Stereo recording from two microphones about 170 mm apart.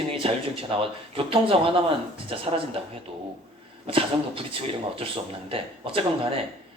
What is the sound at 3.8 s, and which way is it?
Speech, 30° right (ahead or behind).